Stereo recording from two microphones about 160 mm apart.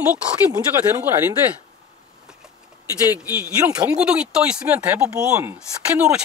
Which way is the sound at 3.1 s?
10° right (ahead or behind).